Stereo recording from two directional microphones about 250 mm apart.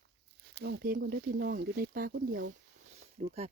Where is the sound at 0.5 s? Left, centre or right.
Right.